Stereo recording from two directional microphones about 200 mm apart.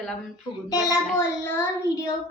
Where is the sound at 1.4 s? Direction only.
10° left (ahead or behind).